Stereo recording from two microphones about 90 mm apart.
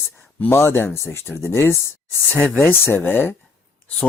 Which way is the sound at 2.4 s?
20° left (ahead or behind).